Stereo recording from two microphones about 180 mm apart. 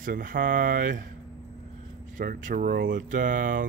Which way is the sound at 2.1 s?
50° right (ahead or behind).